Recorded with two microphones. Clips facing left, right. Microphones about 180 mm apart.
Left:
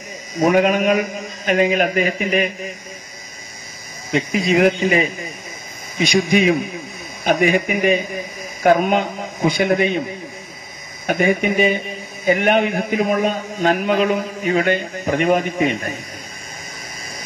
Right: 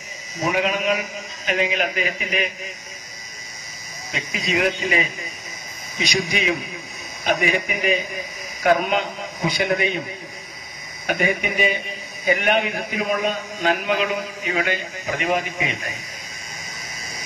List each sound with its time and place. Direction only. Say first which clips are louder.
0.4 s a man's voice: left 7 dB; 50° left (ahead or behind)
4.1 s a man's voice: left 8 dB; 55° left (ahead or behind)
6.2 s a man's voice: left 8 dB; 45° left (ahead or behind)
11.4 s a man's voice: left 6 dB; 45° left (ahead or behind)